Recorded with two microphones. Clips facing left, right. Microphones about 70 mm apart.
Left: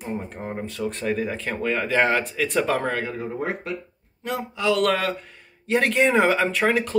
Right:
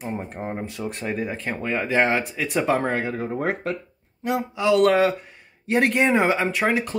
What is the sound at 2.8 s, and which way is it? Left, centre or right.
Speech, right.